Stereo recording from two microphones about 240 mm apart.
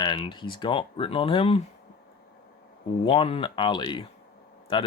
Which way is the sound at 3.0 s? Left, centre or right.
Left.